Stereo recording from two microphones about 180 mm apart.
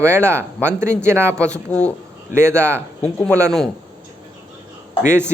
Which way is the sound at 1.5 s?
5° left (ahead or behind).